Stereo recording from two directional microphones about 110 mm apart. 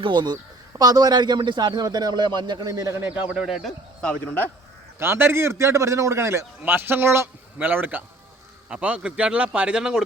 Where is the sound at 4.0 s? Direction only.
10° left (ahead or behind).